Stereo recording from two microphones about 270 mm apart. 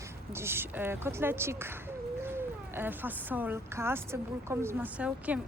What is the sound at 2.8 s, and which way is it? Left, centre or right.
Speech, centre.